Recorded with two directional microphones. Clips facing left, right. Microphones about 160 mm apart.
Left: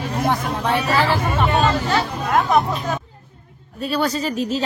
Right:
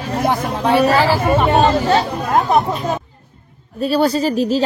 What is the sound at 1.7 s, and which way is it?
Speech, 35° right (ahead or behind).